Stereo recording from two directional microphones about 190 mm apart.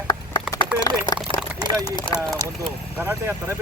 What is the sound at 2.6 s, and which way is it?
Speech, 10° right (ahead or behind).